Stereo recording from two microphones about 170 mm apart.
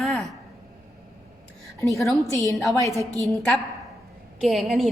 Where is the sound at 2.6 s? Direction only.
20° left (ahead or behind).